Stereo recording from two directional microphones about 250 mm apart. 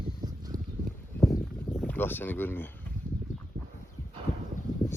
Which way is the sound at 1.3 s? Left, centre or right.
Centre.